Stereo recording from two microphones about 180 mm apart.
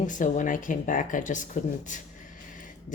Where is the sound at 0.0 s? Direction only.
45° left (ahead or behind).